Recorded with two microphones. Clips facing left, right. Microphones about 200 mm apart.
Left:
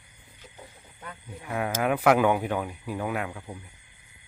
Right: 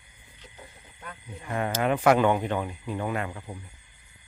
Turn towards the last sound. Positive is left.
turn(degrees=0)  # may be behind; listen again after turning